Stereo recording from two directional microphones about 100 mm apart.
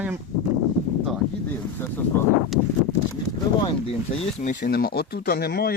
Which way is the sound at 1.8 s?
20° left (ahead or behind).